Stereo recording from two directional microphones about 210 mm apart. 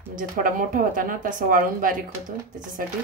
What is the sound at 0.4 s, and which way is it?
A woman's voice, 40° right (ahead or behind).